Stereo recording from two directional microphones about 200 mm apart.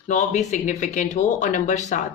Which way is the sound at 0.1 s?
35° left (ahead or behind).